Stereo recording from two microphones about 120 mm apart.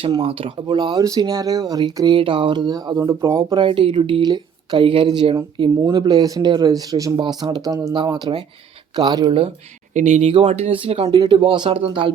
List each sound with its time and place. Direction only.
0.2 s speech: 50° right (ahead or behind)
1.0 s speech: 30° right (ahead or behind)
3.5 s speech: 45° right (ahead or behind)
9.9 s speech: 90° right
10.2 s speech: 60° right (ahead or behind)